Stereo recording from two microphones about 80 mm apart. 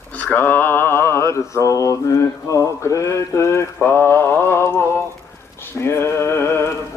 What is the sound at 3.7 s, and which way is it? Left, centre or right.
Mantra, left.